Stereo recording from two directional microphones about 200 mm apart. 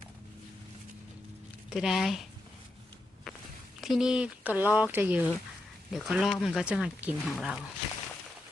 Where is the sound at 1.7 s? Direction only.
Centre (ahead or behind).